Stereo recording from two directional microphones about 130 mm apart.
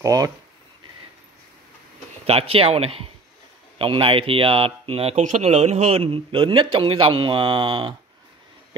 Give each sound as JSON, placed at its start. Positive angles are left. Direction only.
{"t": 0.0, "sound": "speech", "side_deg": -25}
{"t": 2.2, "sound": "a man's voice", "side_deg": -50}
{"t": 5.2, "sound": "a man's voice", "side_deg": -65}